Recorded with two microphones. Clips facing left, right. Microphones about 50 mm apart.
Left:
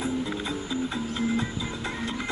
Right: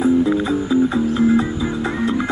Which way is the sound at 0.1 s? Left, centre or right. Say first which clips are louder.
Right 14 dB; right.